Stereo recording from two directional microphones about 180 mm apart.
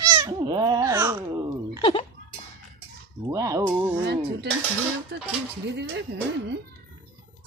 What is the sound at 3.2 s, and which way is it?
Speech, 20° right (ahead or behind).